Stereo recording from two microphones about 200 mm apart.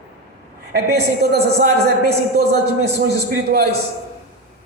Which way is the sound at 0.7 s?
55° right (ahead or behind).